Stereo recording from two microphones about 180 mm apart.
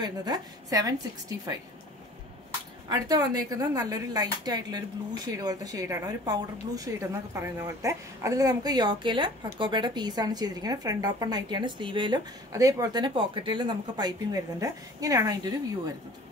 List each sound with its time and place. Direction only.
0.0 s speech: 20° right (ahead or behind)
2.9 s speech: 20° right (ahead or behind)